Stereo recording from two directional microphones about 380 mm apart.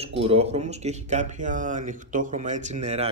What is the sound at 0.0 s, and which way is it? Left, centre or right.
Speech, centre.